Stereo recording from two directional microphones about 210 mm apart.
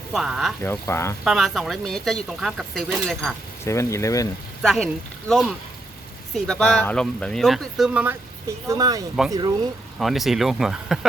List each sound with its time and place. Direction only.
0.1 s speech: centre (ahead or behind)
0.6 s speech: 10° left (ahead or behind)
1.2 s speech: centre (ahead or behind)
3.6 s speech: 15° left (ahead or behind)
4.6 s speech: centre (ahead or behind)
8.6 s speech: 15° right (ahead or behind)
10.0 s speech: centre (ahead or behind)